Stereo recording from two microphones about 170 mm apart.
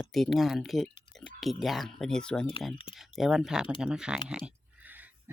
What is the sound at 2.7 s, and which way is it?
Speech, 30° left (ahead or behind).